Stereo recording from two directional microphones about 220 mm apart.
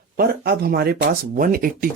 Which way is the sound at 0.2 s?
45° right (ahead or behind).